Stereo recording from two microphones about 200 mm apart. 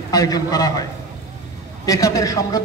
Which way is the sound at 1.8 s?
15° left (ahead or behind).